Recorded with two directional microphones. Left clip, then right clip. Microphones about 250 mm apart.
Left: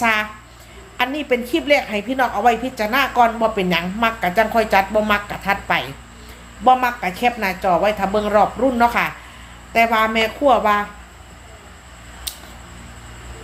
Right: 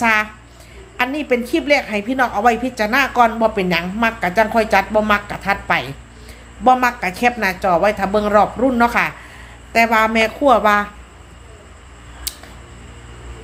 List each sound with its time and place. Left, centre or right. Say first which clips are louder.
0.0 s a woman's voice: right 2 dB; centre